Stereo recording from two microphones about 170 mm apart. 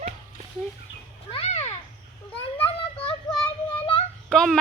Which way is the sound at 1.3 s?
35° left (ahead or behind).